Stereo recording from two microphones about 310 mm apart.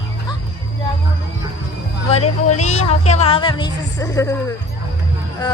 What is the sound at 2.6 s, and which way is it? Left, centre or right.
A woman's voice, left.